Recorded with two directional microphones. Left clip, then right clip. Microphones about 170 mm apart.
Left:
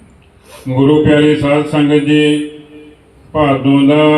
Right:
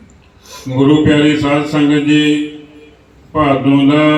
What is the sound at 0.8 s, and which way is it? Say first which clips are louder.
Mantra: left 1 dB; 25° left (ahead or behind).